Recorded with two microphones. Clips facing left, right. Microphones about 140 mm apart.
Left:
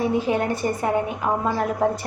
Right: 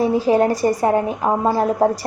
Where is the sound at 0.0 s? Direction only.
35° right (ahead or behind).